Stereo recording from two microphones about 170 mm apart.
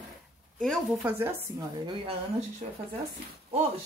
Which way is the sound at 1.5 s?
25° right (ahead or behind).